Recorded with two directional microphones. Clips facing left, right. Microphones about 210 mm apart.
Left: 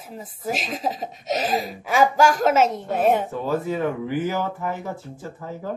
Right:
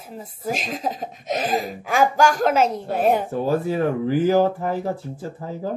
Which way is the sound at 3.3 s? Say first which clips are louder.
Right 3 dB; 35° right (ahead or behind).